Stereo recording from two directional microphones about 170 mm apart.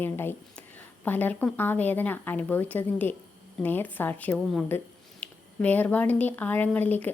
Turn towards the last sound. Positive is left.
turn(degrees=10)  # may be behind; listen again after turning